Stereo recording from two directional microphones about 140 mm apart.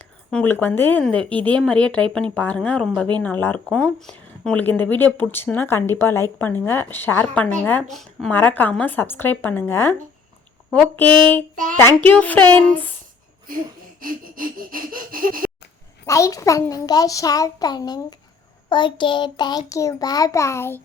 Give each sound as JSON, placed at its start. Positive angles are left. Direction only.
{"t": 0.3, "sound": "a woman's voice", "side_deg": 10}
{"t": 8.3, "sound": "a woman's voice", "side_deg": 15}
{"t": 11.5, "sound": "speech", "side_deg": -70}
{"t": 11.8, "sound": "a woman's voice", "side_deg": 15}
{"t": 14.0, "sound": "a sound", "side_deg": -85}
{"t": 16.0, "sound": "a child's voice", "side_deg": 20}